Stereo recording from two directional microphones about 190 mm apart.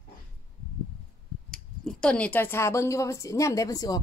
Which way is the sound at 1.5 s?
5° left (ahead or behind).